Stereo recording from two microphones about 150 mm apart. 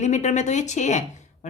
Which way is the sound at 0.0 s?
50° left (ahead or behind).